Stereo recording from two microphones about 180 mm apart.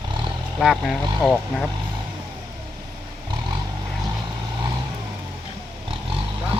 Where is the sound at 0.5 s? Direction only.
Centre (ahead or behind).